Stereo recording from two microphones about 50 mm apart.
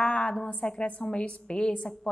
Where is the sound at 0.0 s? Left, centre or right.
Left.